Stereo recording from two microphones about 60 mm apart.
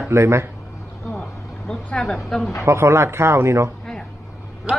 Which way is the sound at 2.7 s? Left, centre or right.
Right.